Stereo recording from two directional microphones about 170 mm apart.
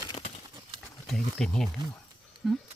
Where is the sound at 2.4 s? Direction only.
5° right (ahead or behind).